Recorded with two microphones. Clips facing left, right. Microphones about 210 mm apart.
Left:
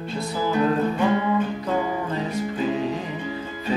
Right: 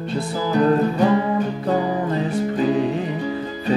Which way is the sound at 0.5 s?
40° right (ahead or behind).